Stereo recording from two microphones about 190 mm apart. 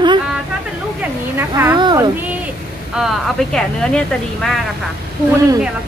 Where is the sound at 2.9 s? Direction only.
Centre (ahead or behind).